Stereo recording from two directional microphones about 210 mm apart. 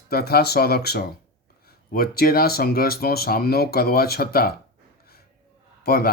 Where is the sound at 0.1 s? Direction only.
45° left (ahead or behind).